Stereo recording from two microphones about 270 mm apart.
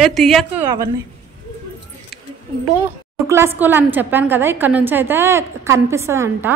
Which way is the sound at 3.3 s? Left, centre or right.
Centre.